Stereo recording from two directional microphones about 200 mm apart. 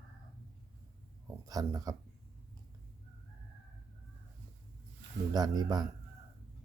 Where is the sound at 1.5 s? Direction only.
20° right (ahead or behind).